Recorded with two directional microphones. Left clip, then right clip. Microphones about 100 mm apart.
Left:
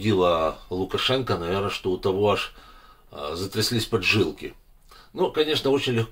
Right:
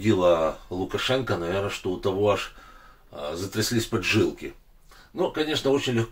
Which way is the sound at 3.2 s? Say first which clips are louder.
Left 1 dB; 55° left (ahead or behind).